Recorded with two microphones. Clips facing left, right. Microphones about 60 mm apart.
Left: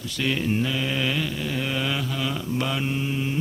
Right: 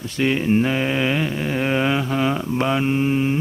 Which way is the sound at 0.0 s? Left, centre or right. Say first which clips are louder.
Right 5 dB; right.